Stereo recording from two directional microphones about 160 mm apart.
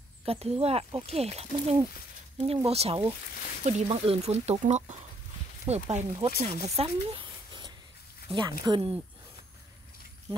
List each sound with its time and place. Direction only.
0.2 s speech: 40° right (ahead or behind)
6.6 s a sound: 35° right (ahead or behind)
8.3 s speech: 30° right (ahead or behind)